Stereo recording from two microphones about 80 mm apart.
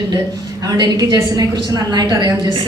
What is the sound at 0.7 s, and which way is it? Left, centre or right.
A woman's voice, right.